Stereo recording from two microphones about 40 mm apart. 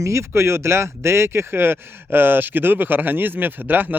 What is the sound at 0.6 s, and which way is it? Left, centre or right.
Speech, right.